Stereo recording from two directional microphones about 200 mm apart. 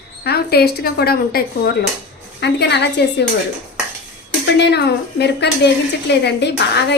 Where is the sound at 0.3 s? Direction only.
55° left (ahead or behind).